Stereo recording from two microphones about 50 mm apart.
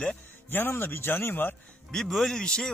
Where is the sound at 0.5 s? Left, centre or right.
Left.